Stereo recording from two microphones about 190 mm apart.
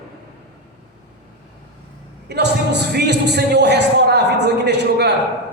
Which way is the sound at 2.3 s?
60° right (ahead or behind).